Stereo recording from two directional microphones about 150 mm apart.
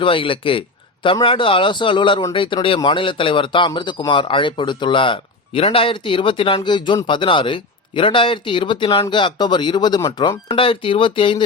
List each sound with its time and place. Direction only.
0.0 s speech: 35° left (ahead or behind)